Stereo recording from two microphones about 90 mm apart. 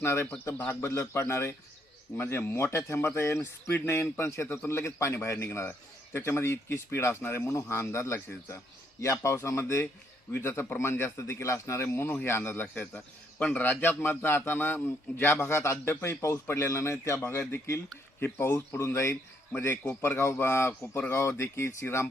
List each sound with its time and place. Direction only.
0.0 s a man's voice: 25° left (ahead or behind)